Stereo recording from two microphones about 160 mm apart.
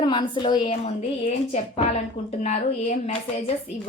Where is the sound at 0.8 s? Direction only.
45° left (ahead or behind).